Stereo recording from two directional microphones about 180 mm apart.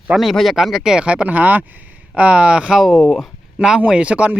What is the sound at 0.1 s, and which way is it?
Speech, centre (ahead or behind).